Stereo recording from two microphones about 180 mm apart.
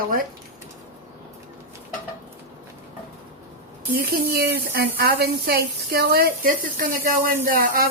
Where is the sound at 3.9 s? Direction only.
60° right (ahead or behind).